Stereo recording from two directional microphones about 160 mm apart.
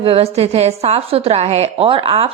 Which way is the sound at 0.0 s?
35° right (ahead or behind).